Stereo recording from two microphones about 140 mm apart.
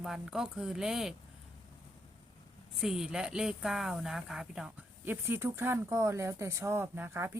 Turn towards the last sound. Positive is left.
turn(degrees=-15)  # may be behind; listen again after turning